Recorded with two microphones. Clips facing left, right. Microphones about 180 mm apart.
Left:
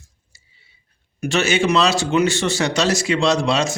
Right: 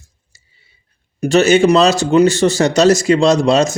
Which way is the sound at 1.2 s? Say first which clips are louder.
Right 8 dB; 40° right (ahead or behind).